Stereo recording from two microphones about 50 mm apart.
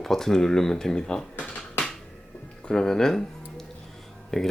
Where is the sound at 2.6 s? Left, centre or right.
Centre.